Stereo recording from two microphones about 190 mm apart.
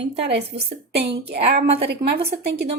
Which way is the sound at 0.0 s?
60° right (ahead or behind).